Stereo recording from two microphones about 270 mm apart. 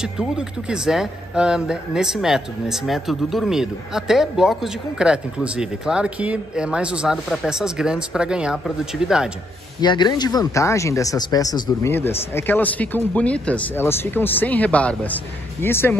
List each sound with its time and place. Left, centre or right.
0.0 s speech: centre
9.8 s speech: centre